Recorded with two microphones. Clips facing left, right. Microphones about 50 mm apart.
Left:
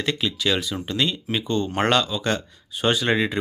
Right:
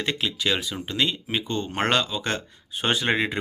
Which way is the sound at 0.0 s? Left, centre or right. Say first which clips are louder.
Left 2 dB; right.